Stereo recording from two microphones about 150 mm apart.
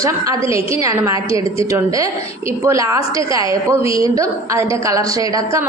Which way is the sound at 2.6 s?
20° right (ahead or behind).